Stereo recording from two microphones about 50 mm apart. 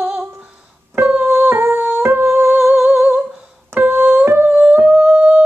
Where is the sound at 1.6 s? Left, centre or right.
Right.